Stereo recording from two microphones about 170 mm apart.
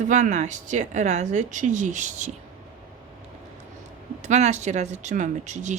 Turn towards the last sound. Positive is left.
turn(degrees=-45)  # may be behind; listen again after turning